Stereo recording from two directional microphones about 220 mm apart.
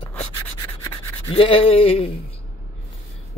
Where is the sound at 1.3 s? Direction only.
25° left (ahead or behind).